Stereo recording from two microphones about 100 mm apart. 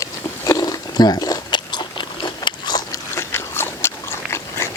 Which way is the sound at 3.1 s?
25° left (ahead or behind).